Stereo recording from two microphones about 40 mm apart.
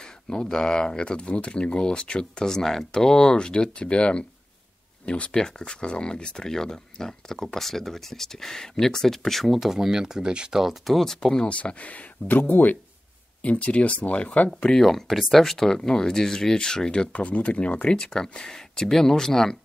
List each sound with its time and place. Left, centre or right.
0.0 s speech: centre
9.5 s speech: centre
10.6 s speech: centre
11.1 s speech: centre
11.4 s speech: left
13.4 s speech: left
14.6 s speech: centre
17.1 s speech: left
17.9 s speech: centre